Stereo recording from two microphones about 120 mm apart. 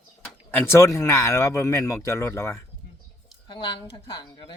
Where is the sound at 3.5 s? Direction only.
45° left (ahead or behind).